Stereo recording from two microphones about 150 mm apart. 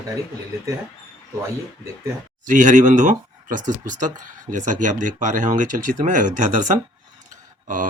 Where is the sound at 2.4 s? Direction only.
60° right (ahead or behind).